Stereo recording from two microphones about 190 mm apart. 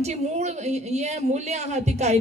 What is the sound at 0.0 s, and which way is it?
Speech, 35° right (ahead or behind).